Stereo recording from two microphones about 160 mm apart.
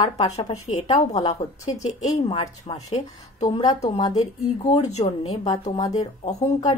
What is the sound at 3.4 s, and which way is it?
Speech, 25° left (ahead or behind).